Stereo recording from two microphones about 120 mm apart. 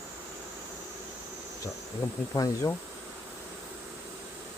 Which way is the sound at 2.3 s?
30° left (ahead or behind).